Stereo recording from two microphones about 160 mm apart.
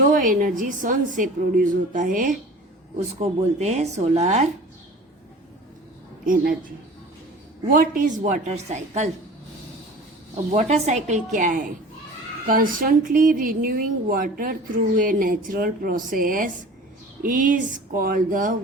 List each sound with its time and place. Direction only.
0.0 s a woman's voice: 55° right (ahead or behind)
3.2 s a woman's voice: 45° right (ahead or behind)
6.2 s a woman's voice: 60° right (ahead or behind)
7.7 s a woman's voice: 55° right (ahead or behind)
10.5 s a woman's voice: 45° right (ahead or behind)